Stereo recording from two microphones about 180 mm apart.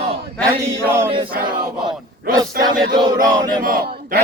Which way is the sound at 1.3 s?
55° right (ahead or behind).